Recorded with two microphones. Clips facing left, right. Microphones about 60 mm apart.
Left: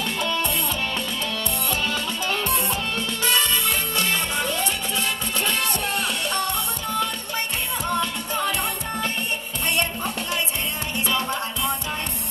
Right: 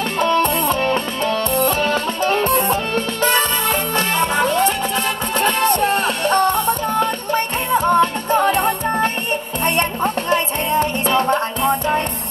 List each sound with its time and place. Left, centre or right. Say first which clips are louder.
0.2 s music: right 12 dB; right